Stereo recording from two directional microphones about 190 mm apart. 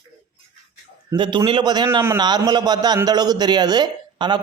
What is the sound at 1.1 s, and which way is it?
A man's voice, 25° right (ahead or behind).